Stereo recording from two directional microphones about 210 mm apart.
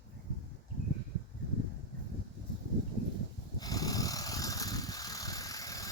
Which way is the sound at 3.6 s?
15° left (ahead or behind).